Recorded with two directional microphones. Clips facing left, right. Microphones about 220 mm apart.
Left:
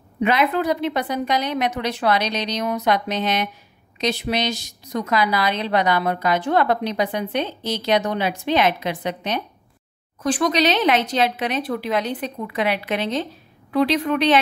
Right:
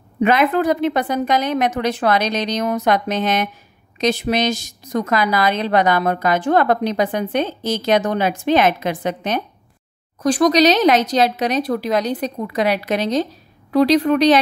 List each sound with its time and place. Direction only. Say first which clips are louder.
0.2 s a woman's voice: right 4 dB; 50° right (ahead or behind)